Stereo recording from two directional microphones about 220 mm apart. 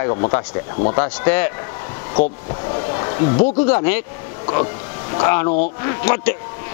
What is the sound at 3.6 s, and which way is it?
Speech, 10° left (ahead or behind).